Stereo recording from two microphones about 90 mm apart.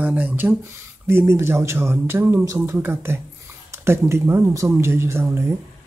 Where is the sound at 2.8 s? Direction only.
25° right (ahead or behind).